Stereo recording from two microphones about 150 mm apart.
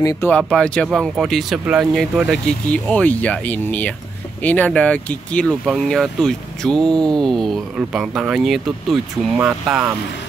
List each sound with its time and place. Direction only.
0.0 s speech: 20° left (ahead or behind)
0.3 s speech: 5° left (ahead or behind)